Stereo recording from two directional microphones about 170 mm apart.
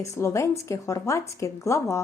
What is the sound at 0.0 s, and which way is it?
Speech, 15° left (ahead or behind).